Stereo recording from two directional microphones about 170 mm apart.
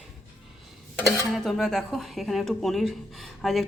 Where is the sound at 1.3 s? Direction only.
Centre (ahead or behind).